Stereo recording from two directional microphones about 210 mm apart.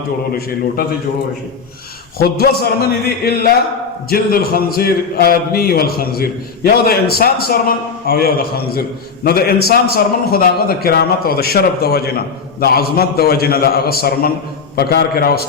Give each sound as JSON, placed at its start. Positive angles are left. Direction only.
{"t": 0.3, "sound": "a man's voice", "side_deg": 45}
{"t": 2.1, "sound": "a man's voice", "side_deg": 45}